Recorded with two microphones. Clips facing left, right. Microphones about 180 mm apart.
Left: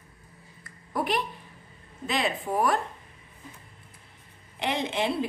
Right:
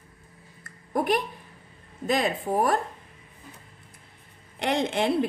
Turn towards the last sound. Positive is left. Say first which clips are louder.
# right 3 dB
turn(degrees=-50)  # may be behind; listen again after turning